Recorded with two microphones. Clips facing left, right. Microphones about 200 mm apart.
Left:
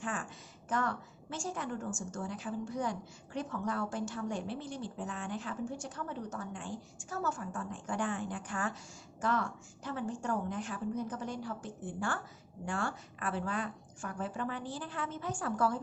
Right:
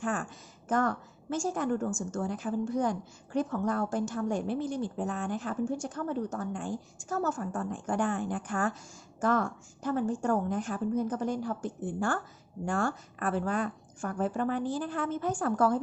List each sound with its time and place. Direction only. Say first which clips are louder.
0.0 s a woman's voice: right 6 dB; 45° right (ahead or behind)